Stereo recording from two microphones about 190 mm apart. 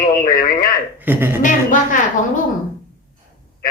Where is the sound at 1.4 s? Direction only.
45° left (ahead or behind).